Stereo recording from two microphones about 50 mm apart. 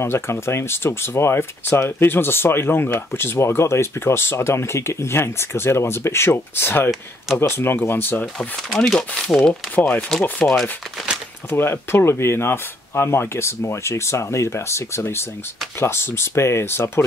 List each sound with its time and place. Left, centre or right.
0.0 s speech: left
8.6 s speech: centre
9.5 s speech: left
10.4 s speech: centre
11.5 s speech: left